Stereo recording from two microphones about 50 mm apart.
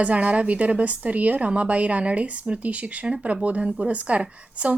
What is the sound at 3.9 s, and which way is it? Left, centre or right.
Speech, right.